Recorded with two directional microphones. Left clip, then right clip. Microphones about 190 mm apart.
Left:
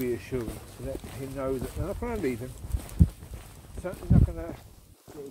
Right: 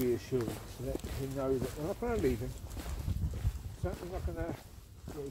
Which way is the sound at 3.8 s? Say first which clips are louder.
Left 9 dB; 25° left (ahead or behind).